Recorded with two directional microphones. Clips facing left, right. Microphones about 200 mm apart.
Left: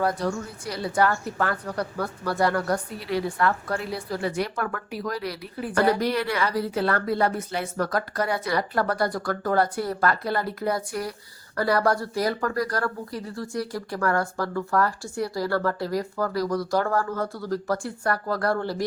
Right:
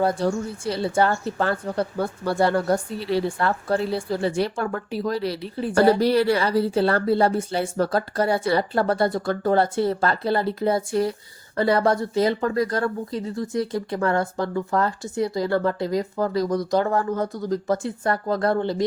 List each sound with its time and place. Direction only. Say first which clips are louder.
0.0 s speech: right 4 dB; 25° right (ahead or behind)